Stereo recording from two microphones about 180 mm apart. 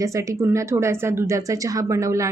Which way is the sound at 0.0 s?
15° right (ahead or behind).